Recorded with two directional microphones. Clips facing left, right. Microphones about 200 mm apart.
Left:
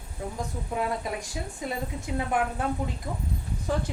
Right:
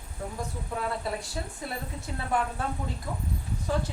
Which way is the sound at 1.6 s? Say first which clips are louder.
Left 6 dB; 15° left (ahead or behind).